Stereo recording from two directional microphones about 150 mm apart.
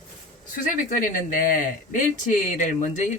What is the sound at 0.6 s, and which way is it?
Speech, 65° left (ahead or behind).